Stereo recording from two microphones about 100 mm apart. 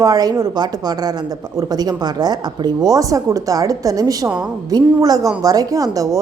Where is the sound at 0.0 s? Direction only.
40° right (ahead or behind).